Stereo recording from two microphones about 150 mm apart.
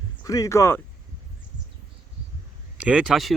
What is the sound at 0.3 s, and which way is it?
Speech, 20° left (ahead or behind).